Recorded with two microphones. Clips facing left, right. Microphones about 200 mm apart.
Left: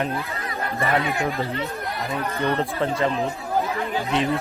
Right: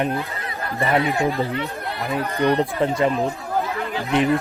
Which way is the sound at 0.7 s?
30° right (ahead or behind).